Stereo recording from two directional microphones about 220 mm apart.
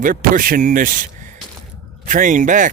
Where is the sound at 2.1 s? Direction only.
35° right (ahead or behind).